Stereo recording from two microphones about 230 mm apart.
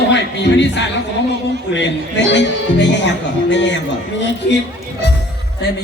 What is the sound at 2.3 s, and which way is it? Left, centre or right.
A man's voice, left.